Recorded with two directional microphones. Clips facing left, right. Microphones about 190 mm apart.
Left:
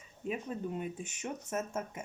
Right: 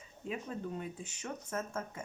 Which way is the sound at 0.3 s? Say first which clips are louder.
Left 3 dB; 20° left (ahead or behind).